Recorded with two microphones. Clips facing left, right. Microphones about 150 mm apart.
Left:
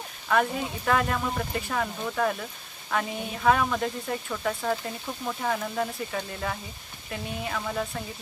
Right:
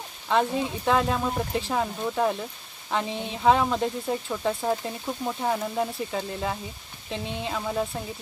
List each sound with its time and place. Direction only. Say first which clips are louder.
0.3 s a woman's voice: right 2 dB; 20° right (ahead or behind)